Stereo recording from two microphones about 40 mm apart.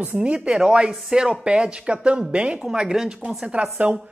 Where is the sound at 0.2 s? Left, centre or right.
Right.